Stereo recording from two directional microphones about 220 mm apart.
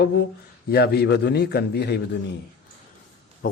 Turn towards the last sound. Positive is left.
turn(degrees=40)  # may be behind; listen again after turning